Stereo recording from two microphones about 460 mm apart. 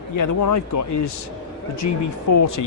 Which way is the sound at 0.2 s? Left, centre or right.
Left.